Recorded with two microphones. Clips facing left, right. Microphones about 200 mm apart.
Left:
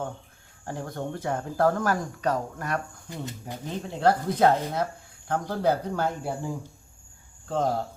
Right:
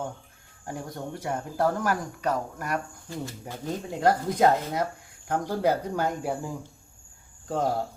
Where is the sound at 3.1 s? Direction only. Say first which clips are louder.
Right 1 dB; 20° left (ahead or behind).